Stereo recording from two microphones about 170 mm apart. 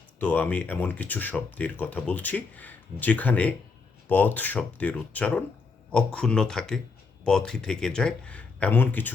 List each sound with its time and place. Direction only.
0.2 s speech: 10° left (ahead or behind)